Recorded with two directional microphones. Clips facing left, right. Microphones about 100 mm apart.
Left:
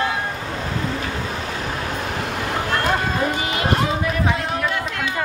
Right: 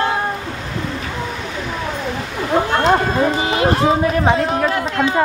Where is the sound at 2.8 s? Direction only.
25° right (ahead or behind).